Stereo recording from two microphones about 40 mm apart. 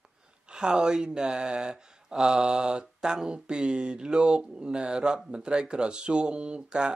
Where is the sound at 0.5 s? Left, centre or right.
Right.